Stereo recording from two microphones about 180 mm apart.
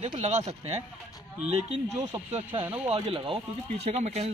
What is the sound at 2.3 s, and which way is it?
A man's voice, 30° right (ahead or behind).